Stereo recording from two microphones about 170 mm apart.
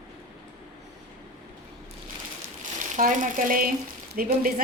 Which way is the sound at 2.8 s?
50° right (ahead or behind).